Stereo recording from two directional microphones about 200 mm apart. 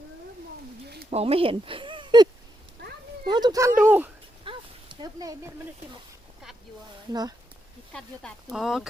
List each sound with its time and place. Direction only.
1.1 s speech: 30° right (ahead or behind)
3.2 s speech: 20° right (ahead or behind)
4.4 s a sound: 20° right (ahead or behind)
7.1 s speech: 20° right (ahead or behind)
7.9 s speech: centre (ahead or behind)